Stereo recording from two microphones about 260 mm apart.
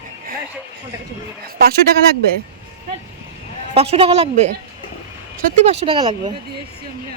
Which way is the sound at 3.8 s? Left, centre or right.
Right.